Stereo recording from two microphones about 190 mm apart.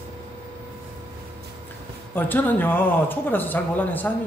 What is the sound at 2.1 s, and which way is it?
A man's voice, 10° left (ahead or behind).